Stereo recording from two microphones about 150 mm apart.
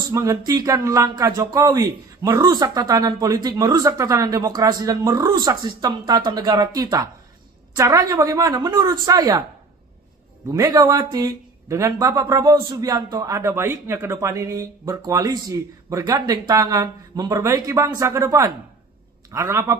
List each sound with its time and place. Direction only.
0.1 s speech: 20° right (ahead or behind)
10.5 s speech: 25° right (ahead or behind)